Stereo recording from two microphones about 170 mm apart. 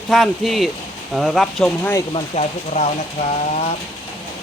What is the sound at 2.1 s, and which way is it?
Speech, 35° left (ahead or behind).